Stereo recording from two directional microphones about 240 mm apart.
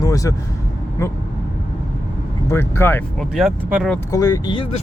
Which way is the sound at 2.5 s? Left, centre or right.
Centre.